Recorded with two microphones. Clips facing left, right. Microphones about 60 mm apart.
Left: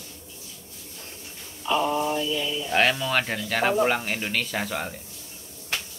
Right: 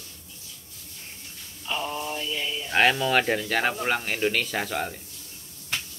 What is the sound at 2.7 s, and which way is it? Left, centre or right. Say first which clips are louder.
Speech: right 2 dB; centre.